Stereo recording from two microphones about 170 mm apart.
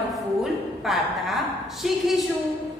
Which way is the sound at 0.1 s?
Centre (ahead or behind).